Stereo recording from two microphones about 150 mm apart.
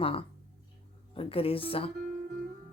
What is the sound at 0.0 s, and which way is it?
Speech, 40° left (ahead or behind).